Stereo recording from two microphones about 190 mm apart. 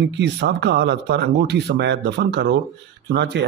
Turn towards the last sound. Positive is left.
turn(degrees=-65)  # may be behind; listen again after turning